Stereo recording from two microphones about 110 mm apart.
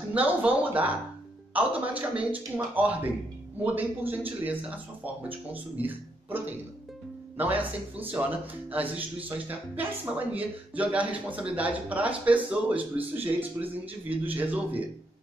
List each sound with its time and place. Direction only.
0.1 s speech: 15° right (ahead or behind)
1.5 s speech: 15° right (ahead or behind)